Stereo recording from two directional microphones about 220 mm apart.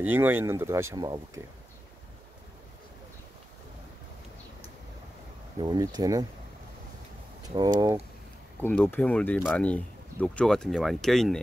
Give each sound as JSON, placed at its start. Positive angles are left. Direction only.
{"t": 0.0, "sound": "speech", "side_deg": -10}
{"t": 5.6, "sound": "speech", "side_deg": -20}
{"t": 7.4, "sound": "speech", "side_deg": -20}
{"t": 8.5, "sound": "speech", "side_deg": 5}